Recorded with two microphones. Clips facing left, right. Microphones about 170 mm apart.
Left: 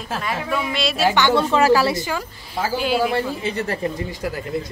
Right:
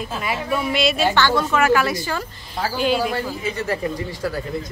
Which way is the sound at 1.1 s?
20° left (ahead or behind).